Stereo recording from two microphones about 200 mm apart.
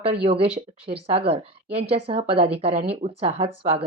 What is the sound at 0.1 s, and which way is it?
Speech, 30° right (ahead or behind).